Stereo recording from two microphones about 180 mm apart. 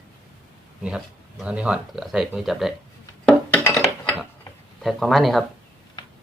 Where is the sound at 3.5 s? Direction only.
15° left (ahead or behind).